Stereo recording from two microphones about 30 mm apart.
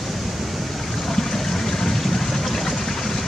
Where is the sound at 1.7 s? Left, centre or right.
Centre.